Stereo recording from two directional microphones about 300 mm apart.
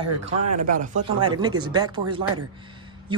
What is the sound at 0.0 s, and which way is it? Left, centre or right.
Speech, right.